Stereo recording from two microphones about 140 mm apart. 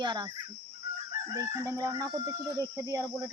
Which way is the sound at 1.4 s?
25° right (ahead or behind).